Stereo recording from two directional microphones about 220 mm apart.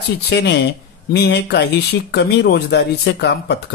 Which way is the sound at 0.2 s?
50° left (ahead or behind).